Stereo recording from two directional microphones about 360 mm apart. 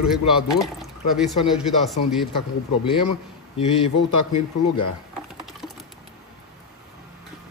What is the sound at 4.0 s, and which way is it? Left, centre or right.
Speech, left.